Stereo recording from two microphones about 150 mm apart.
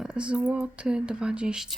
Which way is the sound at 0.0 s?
5° right (ahead or behind).